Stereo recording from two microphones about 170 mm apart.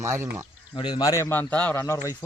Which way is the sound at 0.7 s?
25° left (ahead or behind).